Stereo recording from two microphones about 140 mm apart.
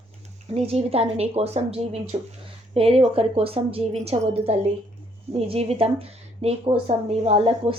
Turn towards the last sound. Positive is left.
turn(degrees=-50)  # may be behind; listen again after turning